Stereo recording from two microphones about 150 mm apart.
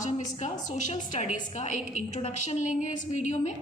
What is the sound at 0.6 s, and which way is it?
A woman's voice, 55° left (ahead or behind).